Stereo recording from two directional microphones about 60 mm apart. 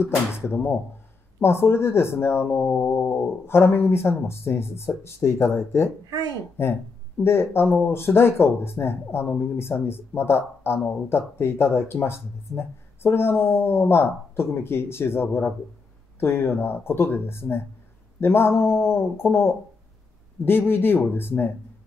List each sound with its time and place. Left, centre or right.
0.0 s speech: left
6.0 s a child's voice: right
6.6 s speech: left